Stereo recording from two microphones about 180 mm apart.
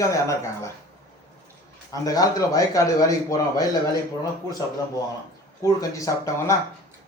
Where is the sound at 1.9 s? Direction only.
20° left (ahead or behind).